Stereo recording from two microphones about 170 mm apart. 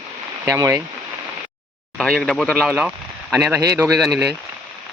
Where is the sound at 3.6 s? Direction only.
20° right (ahead or behind).